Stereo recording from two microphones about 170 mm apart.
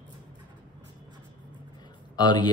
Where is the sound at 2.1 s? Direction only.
25° left (ahead or behind).